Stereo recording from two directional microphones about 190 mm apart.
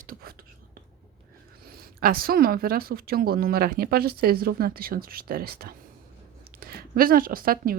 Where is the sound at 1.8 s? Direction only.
50° right (ahead or behind).